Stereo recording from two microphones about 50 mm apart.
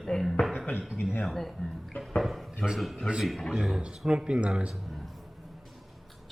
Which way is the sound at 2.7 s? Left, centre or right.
Centre.